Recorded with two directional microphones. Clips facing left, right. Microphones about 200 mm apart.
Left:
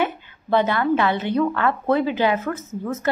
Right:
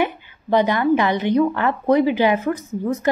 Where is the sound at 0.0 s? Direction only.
15° right (ahead or behind).